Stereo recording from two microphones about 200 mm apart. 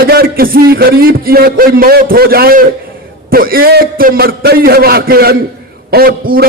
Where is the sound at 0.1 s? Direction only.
50° right (ahead or behind).